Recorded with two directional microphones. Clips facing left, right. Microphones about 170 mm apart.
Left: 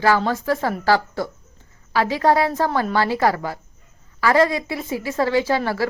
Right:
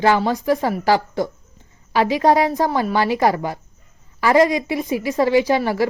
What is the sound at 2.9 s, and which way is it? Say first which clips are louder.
A woman's voice: right 2 dB; 15° right (ahead or behind).